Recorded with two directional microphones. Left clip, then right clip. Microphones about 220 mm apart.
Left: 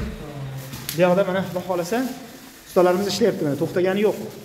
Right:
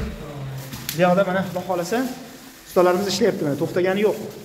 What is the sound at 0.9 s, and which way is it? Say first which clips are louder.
Speech: even; 20° left (ahead or behind).